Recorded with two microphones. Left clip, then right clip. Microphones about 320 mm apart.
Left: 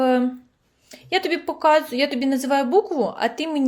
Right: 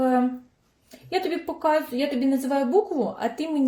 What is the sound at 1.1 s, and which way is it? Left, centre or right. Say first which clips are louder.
A woman's voice: left 4 dB; left.